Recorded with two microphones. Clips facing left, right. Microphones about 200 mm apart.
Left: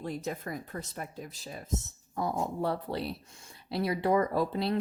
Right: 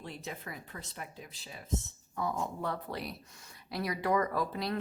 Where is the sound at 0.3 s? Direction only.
45° left (ahead or behind).